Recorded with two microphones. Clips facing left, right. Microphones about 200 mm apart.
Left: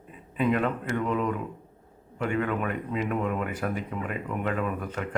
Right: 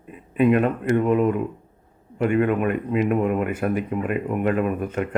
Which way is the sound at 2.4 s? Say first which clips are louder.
Right 8 dB; 15° right (ahead or behind).